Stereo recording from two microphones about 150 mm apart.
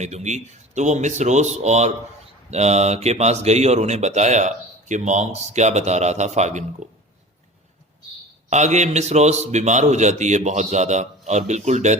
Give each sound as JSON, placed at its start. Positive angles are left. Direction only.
{"t": 0.0, "sound": "speech", "side_deg": -50}
{"t": 8.4, "sound": "speech", "side_deg": -50}